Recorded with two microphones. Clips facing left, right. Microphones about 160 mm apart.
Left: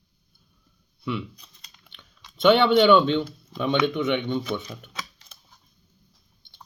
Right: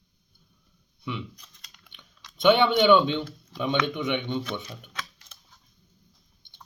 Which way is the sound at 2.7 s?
15° right (ahead or behind).